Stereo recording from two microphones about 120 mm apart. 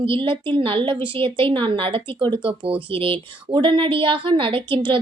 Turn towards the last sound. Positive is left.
turn(degrees=-45)  # may be behind; listen again after turning